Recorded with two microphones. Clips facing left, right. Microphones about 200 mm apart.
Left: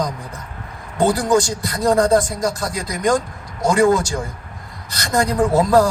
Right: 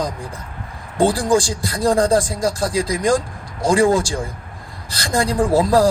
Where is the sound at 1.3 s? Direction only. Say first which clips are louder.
Even; 30° right (ahead or behind).